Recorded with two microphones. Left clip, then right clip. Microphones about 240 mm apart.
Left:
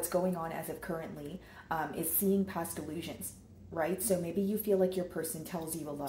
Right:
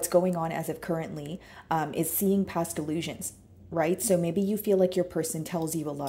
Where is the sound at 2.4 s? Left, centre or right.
Right.